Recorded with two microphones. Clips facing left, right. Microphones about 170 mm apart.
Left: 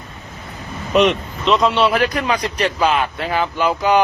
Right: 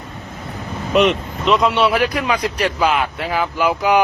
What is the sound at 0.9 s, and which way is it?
A man's voice, centre (ahead or behind).